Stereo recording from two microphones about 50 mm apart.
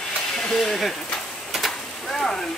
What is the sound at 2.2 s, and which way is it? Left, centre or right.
Rain, centre.